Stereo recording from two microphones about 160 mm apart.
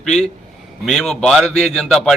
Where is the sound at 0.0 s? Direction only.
5° left (ahead or behind).